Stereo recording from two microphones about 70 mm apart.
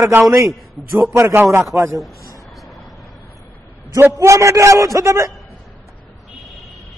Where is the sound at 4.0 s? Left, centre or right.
Right.